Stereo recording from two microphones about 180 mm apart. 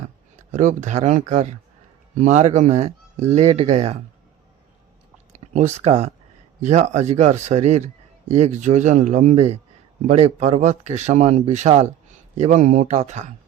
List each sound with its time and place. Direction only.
0.5 s a man's voice: 45° right (ahead or behind)
5.3 s a man's voice: 40° right (ahead or behind)